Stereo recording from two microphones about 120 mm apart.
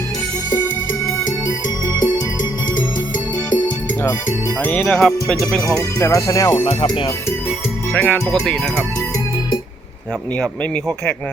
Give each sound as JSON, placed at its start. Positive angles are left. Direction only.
{"t": 1.9, "sound": "music", "side_deg": 35}
{"t": 4.6, "sound": "speech", "side_deg": 10}
{"t": 5.6, "sound": "speech", "side_deg": 25}
{"t": 6.7, "sound": "music", "side_deg": 40}
{"t": 7.9, "sound": "speech", "side_deg": 5}
{"t": 10.3, "sound": "speech", "side_deg": 10}